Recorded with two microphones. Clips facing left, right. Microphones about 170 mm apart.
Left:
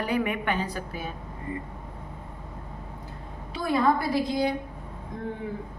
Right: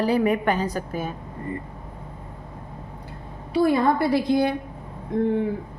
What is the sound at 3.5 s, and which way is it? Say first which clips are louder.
A woman's voice: right 5 dB; 65° right (ahead or behind).